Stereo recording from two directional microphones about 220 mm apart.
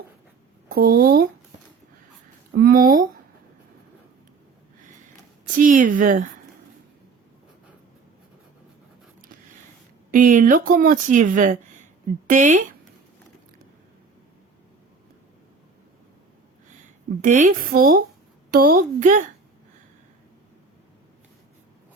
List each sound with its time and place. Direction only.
0.7 s speech: 40° right (ahead or behind)
2.6 s speech: 40° right (ahead or behind)
5.5 s speech: 35° right (ahead or behind)
10.1 s speech: 35° right (ahead or behind)
17.2 s speech: 35° right (ahead or behind)